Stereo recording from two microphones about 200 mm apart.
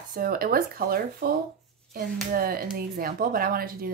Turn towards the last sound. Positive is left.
turn(degrees=-50)  # may be behind; listen again after turning